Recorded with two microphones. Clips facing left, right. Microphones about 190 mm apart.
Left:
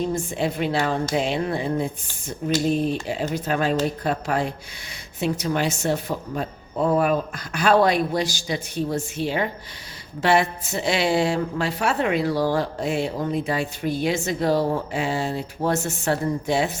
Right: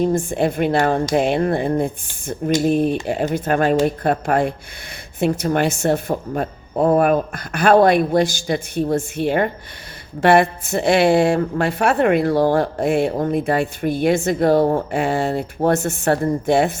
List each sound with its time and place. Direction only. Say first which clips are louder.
0.0 s a woman's voice: right 6 dB; 50° right (ahead or behind)